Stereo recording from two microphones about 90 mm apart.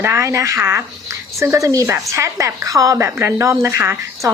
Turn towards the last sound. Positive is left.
turn(degrees=-30)  # may be behind; listen again after turning